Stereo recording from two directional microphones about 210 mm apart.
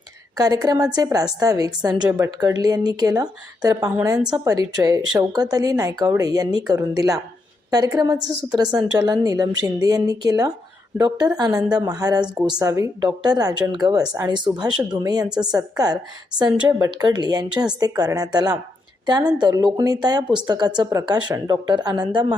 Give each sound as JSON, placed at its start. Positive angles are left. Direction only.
{"t": 0.3, "sound": "a woman's voice", "side_deg": -15}